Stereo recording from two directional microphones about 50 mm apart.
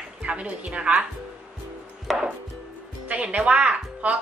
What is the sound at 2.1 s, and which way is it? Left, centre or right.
Chopping, centre.